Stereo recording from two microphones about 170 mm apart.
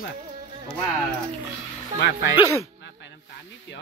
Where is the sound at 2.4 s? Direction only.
15° left (ahead or behind).